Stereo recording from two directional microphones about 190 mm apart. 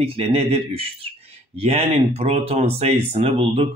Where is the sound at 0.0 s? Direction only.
30° right (ahead or behind).